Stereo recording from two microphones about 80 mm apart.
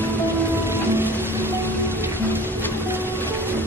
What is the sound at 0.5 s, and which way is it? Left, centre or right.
Music, right.